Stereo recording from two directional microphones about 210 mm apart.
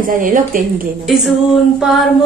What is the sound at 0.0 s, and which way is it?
Speech, 40° right (ahead or behind).